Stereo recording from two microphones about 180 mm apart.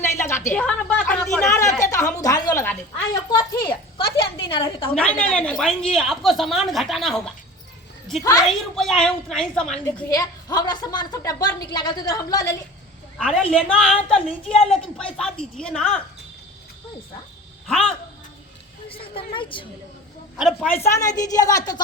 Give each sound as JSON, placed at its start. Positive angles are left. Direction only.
{"t": 0.2, "sound": "a woman's voice", "side_deg": 15}
{"t": 1.5, "sound": "a woman's voice", "side_deg": 15}
{"t": 1.8, "sound": "a sound", "side_deg": 15}
{"t": 2.1, "sound": "a woman's voice", "side_deg": 20}
{"t": 3.2, "sound": "a woman's voice", "side_deg": 25}
{"t": 4.9, "sound": "a woman's voice", "side_deg": 5}
{"t": 8.2, "sound": "a woman's voice", "side_deg": 20}
{"t": 8.4, "sound": "a woman's voice", "side_deg": 0}
{"t": 10.1, "sound": "a woman's voice", "side_deg": 20}
{"t": 13.1, "sound": "a woman's voice", "side_deg": 5}
{"t": 17.7, "sound": "a woman's voice", "side_deg": 0}
{"t": 18.9, "sound": "a woman's voice", "side_deg": 30}
{"t": 20.4, "sound": "a woman's voice", "side_deg": 0}
{"t": 20.8, "sound": "a woman's voice", "side_deg": 20}